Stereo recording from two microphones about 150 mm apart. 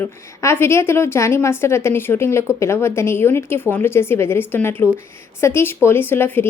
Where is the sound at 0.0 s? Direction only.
15° left (ahead or behind).